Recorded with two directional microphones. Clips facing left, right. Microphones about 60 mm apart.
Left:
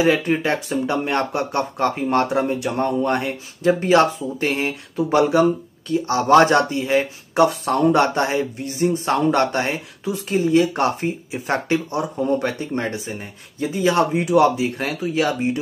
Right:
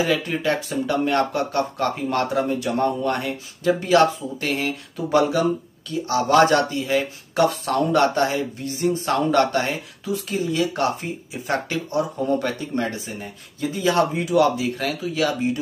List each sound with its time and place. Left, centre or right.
0.0 s speech: left